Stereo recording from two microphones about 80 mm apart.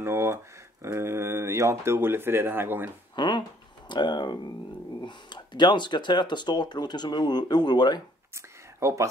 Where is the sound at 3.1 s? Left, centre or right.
Left.